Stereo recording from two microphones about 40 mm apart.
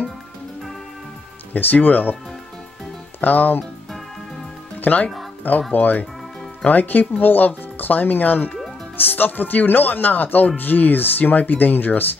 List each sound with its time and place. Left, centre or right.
1.5 s speech: left
3.2 s speech: left
4.8 s speech: left